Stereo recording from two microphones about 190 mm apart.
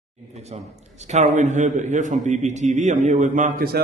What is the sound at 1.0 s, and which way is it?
A man's voice, 40° right (ahead or behind).